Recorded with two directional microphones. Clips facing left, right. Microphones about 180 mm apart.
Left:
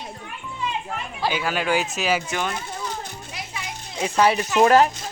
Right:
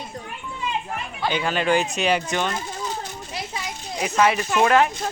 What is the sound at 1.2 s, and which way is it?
Speech, 5° left (ahead or behind).